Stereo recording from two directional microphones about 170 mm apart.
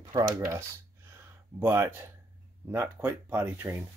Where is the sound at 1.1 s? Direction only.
15° right (ahead or behind).